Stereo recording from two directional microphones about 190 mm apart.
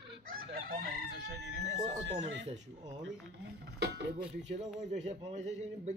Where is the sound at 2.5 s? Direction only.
40° right (ahead or behind).